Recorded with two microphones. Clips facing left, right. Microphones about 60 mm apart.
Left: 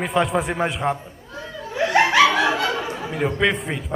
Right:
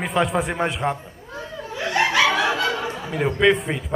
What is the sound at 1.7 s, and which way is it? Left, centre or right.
Snicker, left.